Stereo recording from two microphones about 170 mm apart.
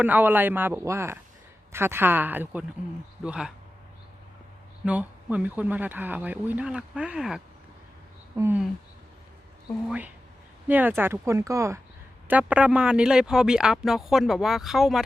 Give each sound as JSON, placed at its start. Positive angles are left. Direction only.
{"t": 0.0, "sound": "speech", "side_deg": -10}
{"t": 4.9, "sound": "speech", "side_deg": -10}
{"t": 10.7, "sound": "speech", "side_deg": -10}